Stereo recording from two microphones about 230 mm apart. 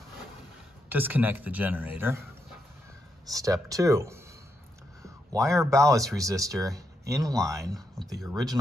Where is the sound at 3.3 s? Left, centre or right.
Centre.